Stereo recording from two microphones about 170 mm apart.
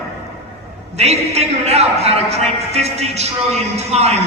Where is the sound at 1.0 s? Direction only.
40° right (ahead or behind).